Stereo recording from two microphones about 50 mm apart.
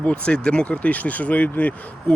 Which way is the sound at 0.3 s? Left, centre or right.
Centre.